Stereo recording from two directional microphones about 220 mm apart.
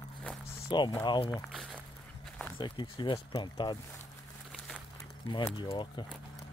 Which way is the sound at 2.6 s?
20° left (ahead or behind).